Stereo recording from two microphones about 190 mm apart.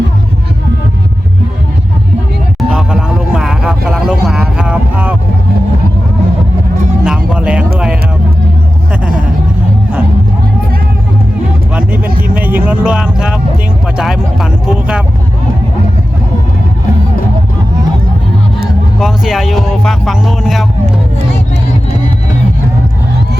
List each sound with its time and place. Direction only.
2.6 s a sound: centre (ahead or behind)
7.0 s music: 5° right (ahead or behind)
11.7 s vehicle: 5° right (ahead or behind)
12.3 s a sound: 10° right (ahead or behind)
13.8 s vehicle: 5° right (ahead or behind)
18.9 s music: centre (ahead or behind)